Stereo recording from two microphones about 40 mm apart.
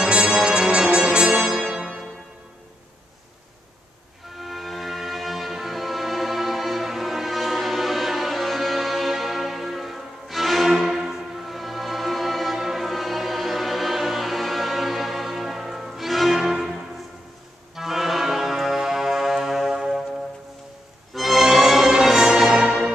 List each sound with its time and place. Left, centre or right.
0.0 s music: centre
4.4 s music: centre
21.1 s music: centre